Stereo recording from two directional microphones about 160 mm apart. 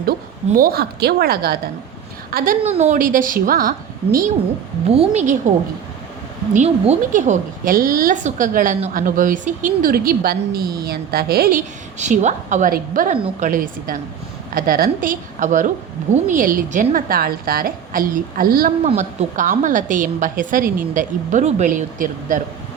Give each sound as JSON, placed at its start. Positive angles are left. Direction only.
{"t": 0.5, "sound": "a woman's voice", "side_deg": -65}
{"t": 2.3, "sound": "a woman's voice", "side_deg": -60}
{"t": 2.6, "sound": "a woman's voice", "side_deg": -45}
{"t": 4.9, "sound": "a woman's voice", "side_deg": -45}
{"t": 6.5, "sound": "a woman's voice", "side_deg": -50}
{"t": 11.9, "sound": "a woman's voice", "side_deg": -50}
{"t": 18.8, "sound": "a woman's voice", "side_deg": -40}